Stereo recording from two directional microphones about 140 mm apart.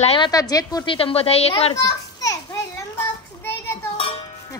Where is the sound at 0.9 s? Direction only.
45° left (ahead or behind).